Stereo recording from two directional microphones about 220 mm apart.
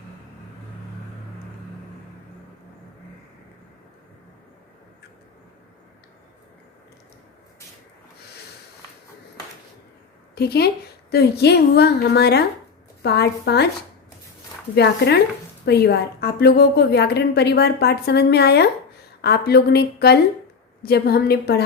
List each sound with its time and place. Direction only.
10.3 s a woman's voice: 45° left (ahead or behind)
14.8 s a woman's voice: 50° left (ahead or behind)